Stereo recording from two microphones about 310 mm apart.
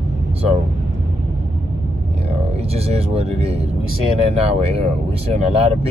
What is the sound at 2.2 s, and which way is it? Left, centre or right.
Speech, centre.